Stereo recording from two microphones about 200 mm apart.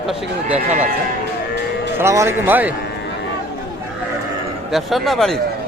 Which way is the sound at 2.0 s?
15° right (ahead or behind).